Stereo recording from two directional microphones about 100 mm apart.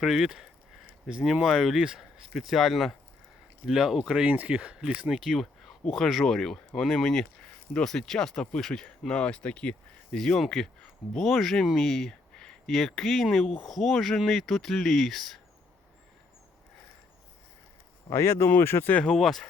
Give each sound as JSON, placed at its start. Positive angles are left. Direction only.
{"t": 0.0, "sound": "speech", "side_deg": -5}
{"t": 18.1, "sound": "speech", "side_deg": 25}
{"t": 18.9, "sound": "speech", "side_deg": 5}